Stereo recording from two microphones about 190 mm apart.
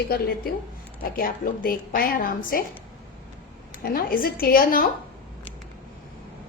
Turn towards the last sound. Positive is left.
turn(degrees=50)  # may be behind; listen again after turning